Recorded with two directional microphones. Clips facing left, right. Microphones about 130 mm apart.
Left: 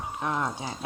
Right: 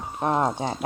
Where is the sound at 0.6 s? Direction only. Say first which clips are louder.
Right 7 dB; 55° right (ahead or behind).